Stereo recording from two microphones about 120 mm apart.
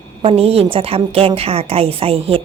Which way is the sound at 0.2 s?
55° right (ahead or behind).